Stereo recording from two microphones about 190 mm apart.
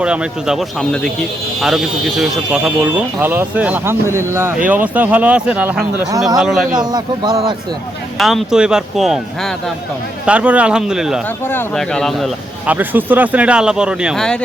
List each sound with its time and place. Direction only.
0.0 s speech: 5° right (ahead or behind)
6.7 s a man's voice: 20° right (ahead or behind)
8.2 s speech: centre (ahead or behind)